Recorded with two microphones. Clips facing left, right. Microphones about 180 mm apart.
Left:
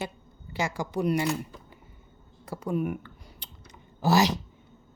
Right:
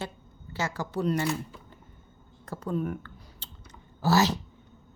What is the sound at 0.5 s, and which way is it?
Speech, 15° left (ahead or behind).